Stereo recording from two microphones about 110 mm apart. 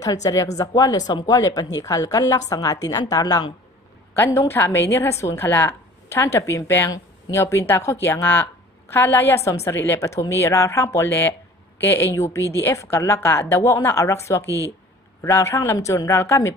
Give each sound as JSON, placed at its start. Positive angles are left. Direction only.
{"t": 0.0, "sound": "a woman's voice", "side_deg": 35}
{"t": 4.1, "sound": "a woman's voice", "side_deg": 25}